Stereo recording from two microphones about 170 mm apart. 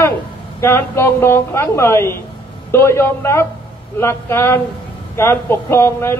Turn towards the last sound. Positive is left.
turn(degrees=15)  # may be behind; listen again after turning